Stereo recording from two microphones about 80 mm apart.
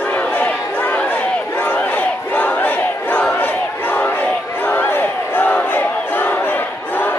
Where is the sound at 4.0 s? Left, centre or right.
Centre.